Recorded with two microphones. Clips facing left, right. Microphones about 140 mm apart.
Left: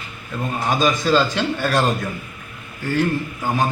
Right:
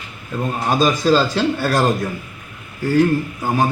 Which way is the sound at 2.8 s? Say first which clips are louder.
Right 6 dB; 40° right (ahead or behind).